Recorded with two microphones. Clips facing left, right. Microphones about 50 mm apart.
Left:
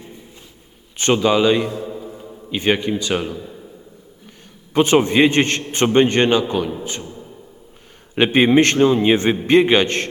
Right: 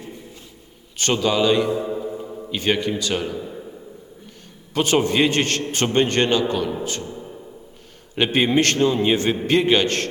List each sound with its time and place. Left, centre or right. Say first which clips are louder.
0.9 s a man's voice: left 4 dB; left
1.8 s music: right 4 dB; centre
2.5 s a man's voice: left 3 dB; left
3.3 s a sound: right 2 dB; centre
4.7 s a man's voice: left 4 dB; left
8.1 s a man's voice: left 5 dB; left